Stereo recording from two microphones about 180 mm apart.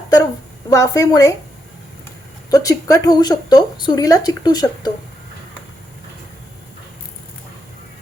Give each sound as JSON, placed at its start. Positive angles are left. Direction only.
{"t": 0.7, "sound": "a woman's voice", "side_deg": 20}
{"t": 2.5, "sound": "a woman's voice", "side_deg": 20}